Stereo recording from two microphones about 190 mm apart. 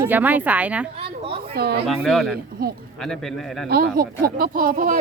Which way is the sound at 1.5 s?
55° right (ahead or behind).